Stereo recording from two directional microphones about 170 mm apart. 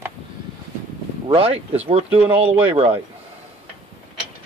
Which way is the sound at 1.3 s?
35° right (ahead or behind).